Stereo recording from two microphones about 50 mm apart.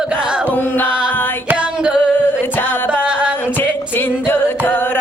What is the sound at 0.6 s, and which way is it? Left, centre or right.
Music, left.